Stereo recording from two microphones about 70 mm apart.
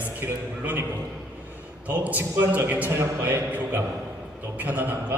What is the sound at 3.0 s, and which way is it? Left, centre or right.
Speech, right.